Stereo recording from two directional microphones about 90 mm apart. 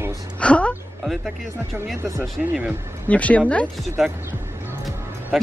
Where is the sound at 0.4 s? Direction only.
15° left (ahead or behind).